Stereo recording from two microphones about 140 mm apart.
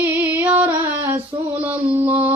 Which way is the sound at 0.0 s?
15° right (ahead or behind).